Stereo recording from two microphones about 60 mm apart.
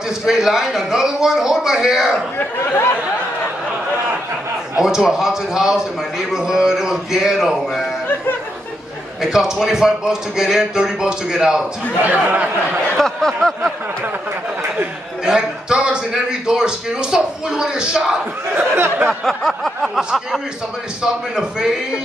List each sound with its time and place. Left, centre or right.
0.2 s a man's voice: centre
2.3 s speech: left
4.7 s a man's voice: centre
9.2 s a man's voice: centre
12.0 s speech: right
12.9 s speech: centre
15.2 s a man's voice: centre
18.5 s speech: right
19.2 s speech: centre
20.0 s a man's voice: centre